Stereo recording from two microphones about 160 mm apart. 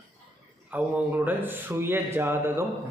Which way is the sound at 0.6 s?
10° right (ahead or behind).